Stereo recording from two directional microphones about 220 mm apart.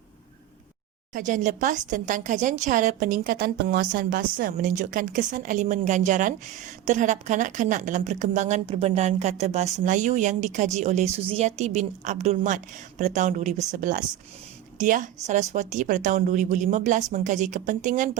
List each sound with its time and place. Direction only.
1.1 s speech: 35° right (ahead or behind)